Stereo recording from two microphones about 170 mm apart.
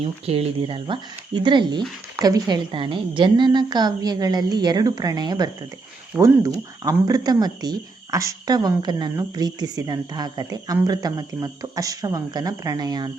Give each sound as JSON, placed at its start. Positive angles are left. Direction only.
{"t": 0.0, "sound": "speech", "side_deg": -35}